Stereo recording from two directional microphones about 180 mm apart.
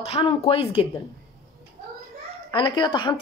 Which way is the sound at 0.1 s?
35° left (ahead or behind).